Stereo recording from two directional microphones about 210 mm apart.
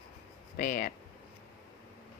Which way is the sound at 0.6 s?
40° left (ahead or behind).